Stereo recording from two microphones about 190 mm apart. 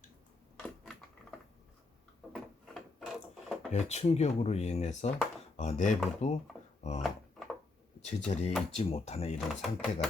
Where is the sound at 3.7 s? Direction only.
35° left (ahead or behind).